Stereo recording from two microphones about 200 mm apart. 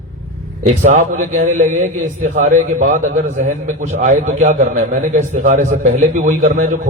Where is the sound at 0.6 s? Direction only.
35° right (ahead or behind).